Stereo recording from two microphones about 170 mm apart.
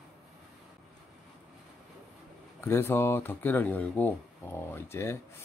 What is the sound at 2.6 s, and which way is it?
Speech, 15° left (ahead or behind).